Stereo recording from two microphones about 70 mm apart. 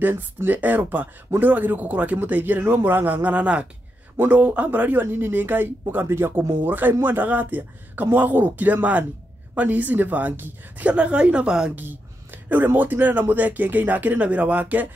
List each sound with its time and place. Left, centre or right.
0.0 s a man's voice: right
10.9 s a woman's voice: centre
11.7 s a man's voice: right